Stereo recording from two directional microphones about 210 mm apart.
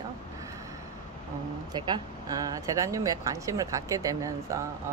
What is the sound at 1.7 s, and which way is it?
A woman's voice, 20° right (ahead or behind).